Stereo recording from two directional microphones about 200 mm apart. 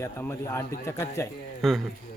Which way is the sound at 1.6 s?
Centre (ahead or behind).